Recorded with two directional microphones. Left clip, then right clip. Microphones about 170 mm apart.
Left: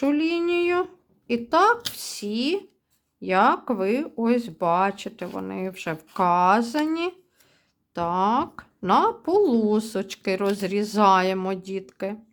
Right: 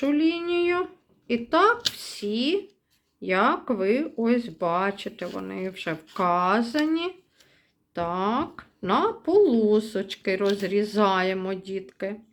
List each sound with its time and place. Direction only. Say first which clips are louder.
0.0 s speech: left 1 dB; 35° left (ahead or behind)